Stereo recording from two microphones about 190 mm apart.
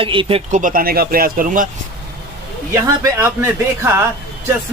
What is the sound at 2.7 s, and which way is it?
Speech, 15° right (ahead or behind).